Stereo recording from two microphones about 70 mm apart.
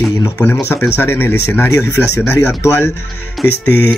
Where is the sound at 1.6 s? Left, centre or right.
Left.